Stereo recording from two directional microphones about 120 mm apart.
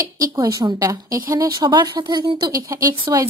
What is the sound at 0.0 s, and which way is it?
A woman's voice, 30° right (ahead or behind).